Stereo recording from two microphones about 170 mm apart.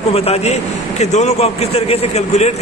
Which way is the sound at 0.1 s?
35° left (ahead or behind).